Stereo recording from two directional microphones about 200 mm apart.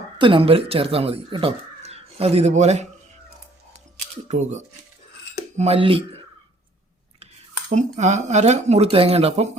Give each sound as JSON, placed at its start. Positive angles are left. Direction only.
{"t": 0.2, "sound": "speech", "side_deg": -25}
{"t": 4.3, "sound": "speech", "side_deg": -35}
{"t": 7.7, "sound": "speech", "side_deg": -35}